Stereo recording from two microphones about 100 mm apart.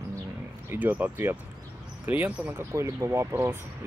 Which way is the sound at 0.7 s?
15° right (ahead or behind).